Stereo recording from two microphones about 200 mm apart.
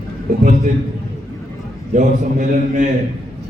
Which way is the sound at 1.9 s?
40° right (ahead or behind).